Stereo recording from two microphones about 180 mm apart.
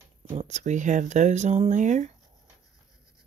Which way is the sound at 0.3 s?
40° right (ahead or behind).